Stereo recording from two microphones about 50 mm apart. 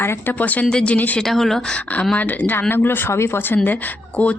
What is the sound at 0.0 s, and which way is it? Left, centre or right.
Speech, left.